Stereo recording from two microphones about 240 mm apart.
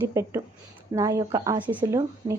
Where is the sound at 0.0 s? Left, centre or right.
Centre.